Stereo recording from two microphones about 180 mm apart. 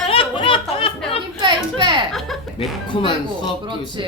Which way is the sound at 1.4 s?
25° right (ahead or behind).